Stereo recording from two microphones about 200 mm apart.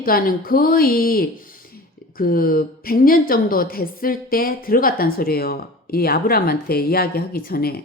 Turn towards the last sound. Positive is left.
turn(degrees=50)  # may be behind; listen again after turning